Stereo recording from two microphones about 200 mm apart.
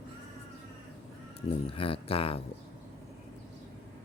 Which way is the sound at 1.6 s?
25° left (ahead or behind).